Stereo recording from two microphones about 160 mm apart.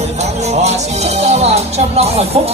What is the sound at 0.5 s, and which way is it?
Music, 45° right (ahead or behind).